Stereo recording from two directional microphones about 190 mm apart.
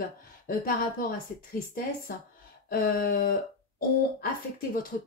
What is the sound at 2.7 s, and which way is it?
Speech, 50° left (ahead or behind).